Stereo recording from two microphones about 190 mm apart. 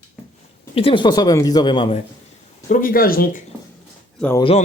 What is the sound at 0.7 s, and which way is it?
Speech, 30° left (ahead or behind).